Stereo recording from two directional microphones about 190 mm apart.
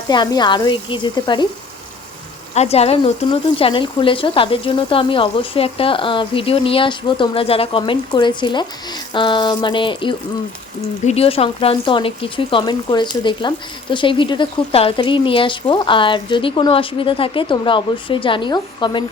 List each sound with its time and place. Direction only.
0.1 s speech: 20° left (ahead or behind)
2.6 s speech: 35° left (ahead or behind)